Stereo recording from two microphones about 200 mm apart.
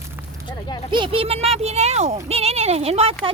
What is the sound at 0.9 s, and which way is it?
Speech, 25° right (ahead or behind).